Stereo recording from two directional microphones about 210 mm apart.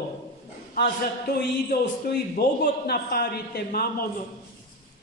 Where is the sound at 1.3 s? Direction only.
45° left (ahead or behind).